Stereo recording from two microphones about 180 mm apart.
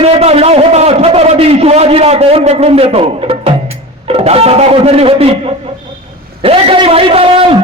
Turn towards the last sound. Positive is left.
turn(degrees=-30)  # may be behind; listen again after turning